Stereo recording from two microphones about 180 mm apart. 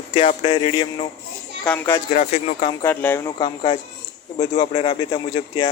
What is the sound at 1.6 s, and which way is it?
Speech, 10° left (ahead or behind).